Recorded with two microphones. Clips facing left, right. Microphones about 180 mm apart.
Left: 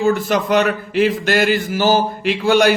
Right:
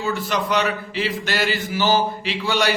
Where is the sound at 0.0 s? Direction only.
45° left (ahead or behind).